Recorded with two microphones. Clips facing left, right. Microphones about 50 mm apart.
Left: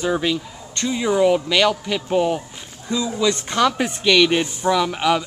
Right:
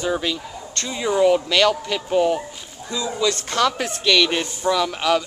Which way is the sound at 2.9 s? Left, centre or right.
Left.